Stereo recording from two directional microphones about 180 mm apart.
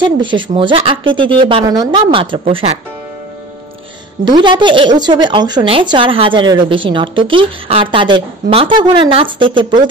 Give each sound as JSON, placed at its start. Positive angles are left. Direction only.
{"t": 0.0, "sound": "a woman's voice", "side_deg": -25}
{"t": 4.2, "sound": "a woman's voice", "side_deg": -25}